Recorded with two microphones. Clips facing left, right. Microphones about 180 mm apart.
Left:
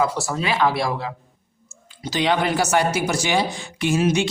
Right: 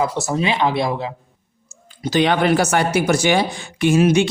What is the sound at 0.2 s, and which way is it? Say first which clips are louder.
Speech: right 2 dB; 20° right (ahead or behind).